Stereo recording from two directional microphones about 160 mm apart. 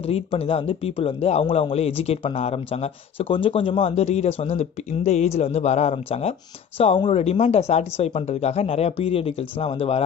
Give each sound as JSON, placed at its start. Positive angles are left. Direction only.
{"t": 0.0, "sound": "a man's voice", "side_deg": 40}